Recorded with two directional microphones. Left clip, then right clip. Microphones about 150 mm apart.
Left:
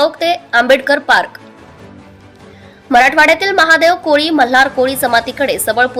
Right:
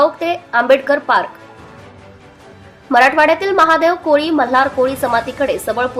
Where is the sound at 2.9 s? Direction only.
25° left (ahead or behind).